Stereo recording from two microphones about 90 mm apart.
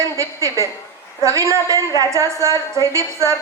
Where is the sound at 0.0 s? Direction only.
35° right (ahead or behind).